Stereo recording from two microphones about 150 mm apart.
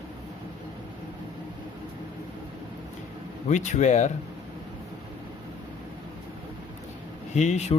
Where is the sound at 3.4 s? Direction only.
55° left (ahead or behind).